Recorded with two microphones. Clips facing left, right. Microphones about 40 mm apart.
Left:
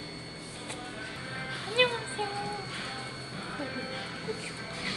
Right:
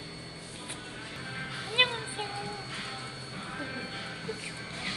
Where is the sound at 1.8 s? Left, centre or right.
Right.